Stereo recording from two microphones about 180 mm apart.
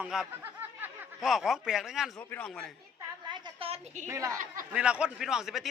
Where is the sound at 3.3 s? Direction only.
35° right (ahead or behind).